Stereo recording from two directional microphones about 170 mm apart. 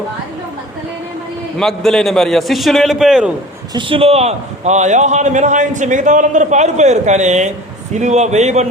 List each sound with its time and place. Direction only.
1.5 s a man's voice: centre (ahead or behind)
3.8 s a man's voice: 30° right (ahead or behind)